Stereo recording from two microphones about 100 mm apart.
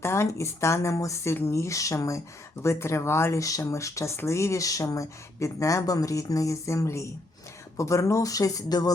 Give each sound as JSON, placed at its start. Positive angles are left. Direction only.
{"t": 0.0, "sound": "speech", "side_deg": 25}